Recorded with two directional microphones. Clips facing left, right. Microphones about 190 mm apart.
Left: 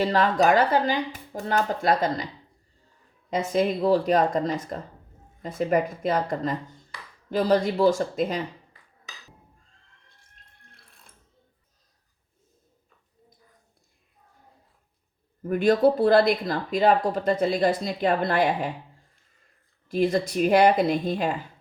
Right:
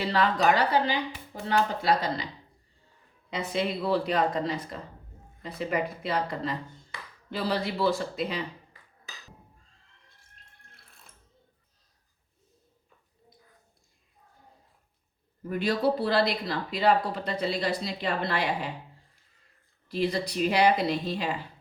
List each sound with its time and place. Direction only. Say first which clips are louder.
0.0 s speech: left 4 dB; 45° left (ahead or behind)
3.2 s speech: left 6 dB; 45° left (ahead or behind)
15.4 s speech: left 7 dB; 50° left (ahead or behind)
19.9 s speech: left 5 dB; 50° left (ahead or behind)